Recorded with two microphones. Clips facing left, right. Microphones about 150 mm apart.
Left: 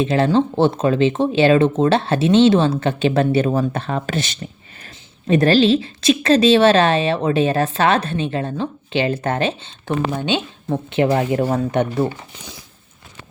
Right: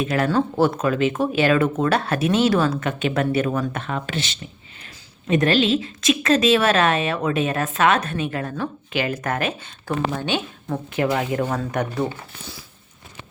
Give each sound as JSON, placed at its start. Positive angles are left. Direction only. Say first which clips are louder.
{"t": 0.0, "sound": "a woman's voice", "louder": "left 4 dB", "side_deg": 25}